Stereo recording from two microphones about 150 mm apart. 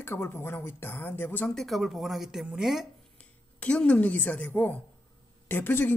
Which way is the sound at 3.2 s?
10° left (ahead or behind).